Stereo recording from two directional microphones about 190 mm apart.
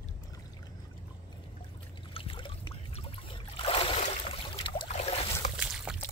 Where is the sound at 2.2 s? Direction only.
25° left (ahead or behind).